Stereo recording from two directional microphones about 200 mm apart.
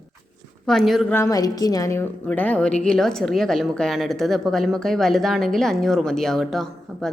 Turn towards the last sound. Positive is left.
turn(degrees=0)  # may be behind; listen again after turning